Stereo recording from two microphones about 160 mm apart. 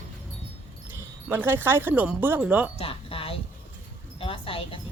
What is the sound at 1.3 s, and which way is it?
Speech, 10° right (ahead or behind).